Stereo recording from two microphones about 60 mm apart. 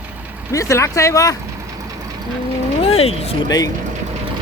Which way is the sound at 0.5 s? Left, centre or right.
Left.